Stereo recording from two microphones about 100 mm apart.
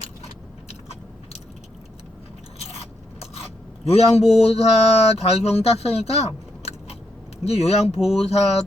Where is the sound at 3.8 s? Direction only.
90° left.